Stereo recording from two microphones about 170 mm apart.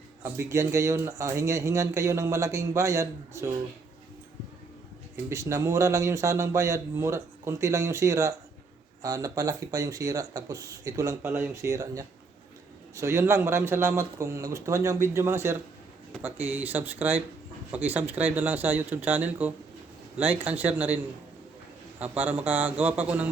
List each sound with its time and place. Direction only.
0.2 s speech: 15° right (ahead or behind)
5.1 s speech: 15° right (ahead or behind)